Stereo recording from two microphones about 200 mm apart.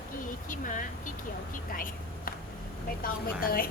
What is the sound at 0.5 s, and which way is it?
Speech, 40° left (ahead or behind).